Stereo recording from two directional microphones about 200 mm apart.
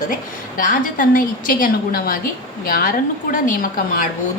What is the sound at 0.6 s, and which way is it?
A woman's voice, 40° left (ahead or behind).